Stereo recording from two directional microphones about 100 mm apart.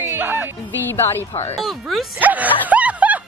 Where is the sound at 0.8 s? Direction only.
25° left (ahead or behind).